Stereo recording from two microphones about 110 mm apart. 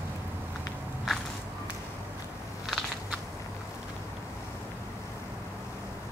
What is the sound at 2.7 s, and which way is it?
Biting, centre (ahead or behind).